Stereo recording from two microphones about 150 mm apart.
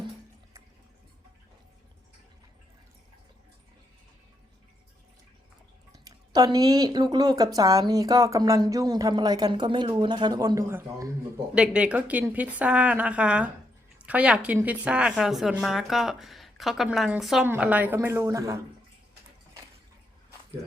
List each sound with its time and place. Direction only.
5.9 s a woman's voice: 25° right (ahead or behind)